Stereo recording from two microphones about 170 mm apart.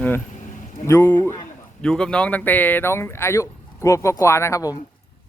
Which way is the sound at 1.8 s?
5° left (ahead or behind).